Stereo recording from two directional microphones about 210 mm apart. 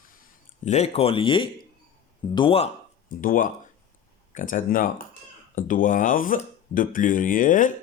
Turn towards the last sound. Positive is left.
turn(degrees=40)  # may be behind; listen again after turning